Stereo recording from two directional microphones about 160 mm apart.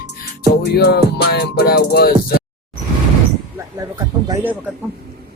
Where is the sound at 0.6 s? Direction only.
90° left; by 2.1 s 75° left (ahead or behind).